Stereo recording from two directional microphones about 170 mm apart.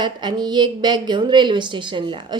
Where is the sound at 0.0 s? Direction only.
25° right (ahead or behind).